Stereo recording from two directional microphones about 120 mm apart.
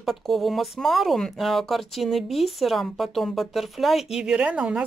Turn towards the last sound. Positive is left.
turn(degrees=-10)  # may be behind; listen again after turning